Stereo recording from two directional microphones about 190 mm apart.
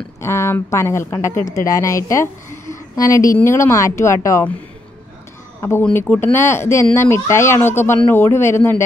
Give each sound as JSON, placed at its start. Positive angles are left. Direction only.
{"t": 0.2, "sound": "a woman's voice", "side_deg": 15}
{"t": 5.6, "sound": "speech", "side_deg": 10}